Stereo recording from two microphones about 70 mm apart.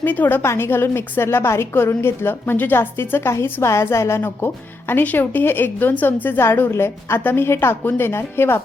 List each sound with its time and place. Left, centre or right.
0.0 s speech: left
4.2 s speech: left